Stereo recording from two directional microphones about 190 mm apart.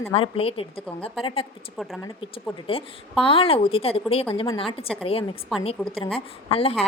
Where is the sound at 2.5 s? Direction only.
30° left (ahead or behind).